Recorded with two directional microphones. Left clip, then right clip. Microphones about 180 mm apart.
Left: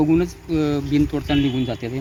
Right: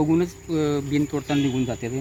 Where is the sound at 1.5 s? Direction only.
10° left (ahead or behind).